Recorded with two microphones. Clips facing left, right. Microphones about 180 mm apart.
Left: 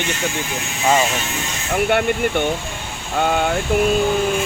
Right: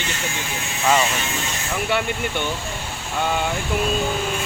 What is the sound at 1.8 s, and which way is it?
Speech, 55° left (ahead or behind).